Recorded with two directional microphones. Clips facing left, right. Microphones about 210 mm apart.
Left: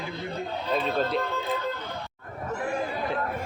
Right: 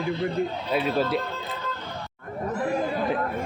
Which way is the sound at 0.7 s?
10° right (ahead or behind).